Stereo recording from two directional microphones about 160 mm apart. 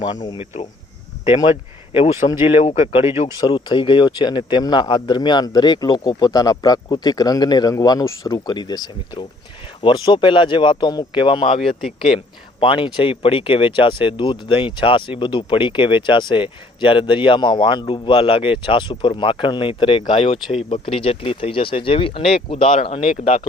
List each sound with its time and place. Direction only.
1.2 s speech: 30° left (ahead or behind)
3.3 s speech: 25° left (ahead or behind)
11.8 s speech: centre (ahead or behind)
12.5 s speech: 30° left (ahead or behind)